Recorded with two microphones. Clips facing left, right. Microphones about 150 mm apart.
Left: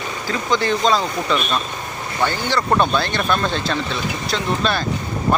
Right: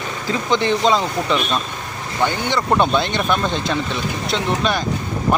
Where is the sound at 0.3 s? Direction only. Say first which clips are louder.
Right 1 dB; 20° right (ahead or behind).